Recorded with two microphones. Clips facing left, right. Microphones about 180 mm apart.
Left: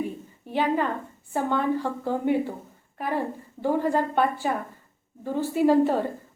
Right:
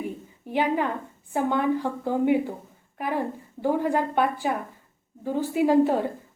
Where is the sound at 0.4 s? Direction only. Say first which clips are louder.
Even; 15° right (ahead or behind).